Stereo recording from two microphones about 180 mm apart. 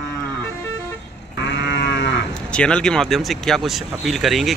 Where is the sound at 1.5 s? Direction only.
85° left.